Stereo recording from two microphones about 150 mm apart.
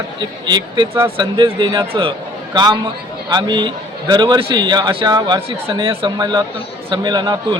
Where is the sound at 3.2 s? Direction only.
30° right (ahead or behind).